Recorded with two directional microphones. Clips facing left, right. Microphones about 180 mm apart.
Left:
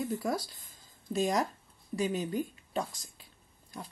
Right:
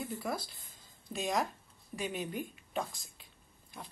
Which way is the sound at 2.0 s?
40° left (ahead or behind).